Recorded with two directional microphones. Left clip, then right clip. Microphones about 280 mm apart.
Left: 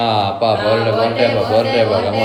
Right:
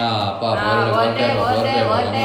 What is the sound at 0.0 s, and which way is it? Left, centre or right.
Speech, left.